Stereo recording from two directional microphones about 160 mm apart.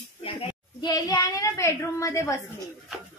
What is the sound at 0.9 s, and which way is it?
A woman's voice, 20° left (ahead or behind).